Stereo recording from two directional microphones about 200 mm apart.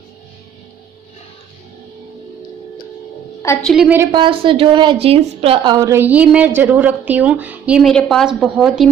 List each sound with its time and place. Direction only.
3.6 s a woman's voice: 5° right (ahead or behind)
4.1 s a woman's voice: 25° right (ahead or behind)
5.8 s a woman's voice: 15° right (ahead or behind)